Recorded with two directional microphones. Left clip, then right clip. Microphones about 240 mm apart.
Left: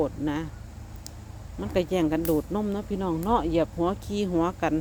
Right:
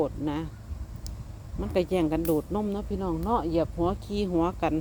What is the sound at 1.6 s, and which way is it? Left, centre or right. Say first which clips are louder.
Speech: left 1 dB; centre.